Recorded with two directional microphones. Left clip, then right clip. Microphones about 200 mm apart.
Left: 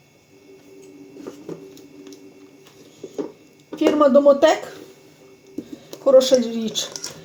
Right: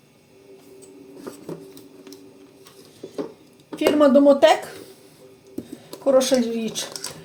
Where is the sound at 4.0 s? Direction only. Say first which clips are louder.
Left 1 dB; 15° left (ahead or behind).